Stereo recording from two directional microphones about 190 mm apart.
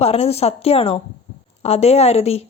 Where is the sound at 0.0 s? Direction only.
30° left (ahead or behind).